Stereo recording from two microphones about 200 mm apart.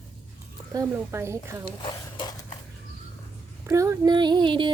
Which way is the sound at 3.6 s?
15° right (ahead or behind).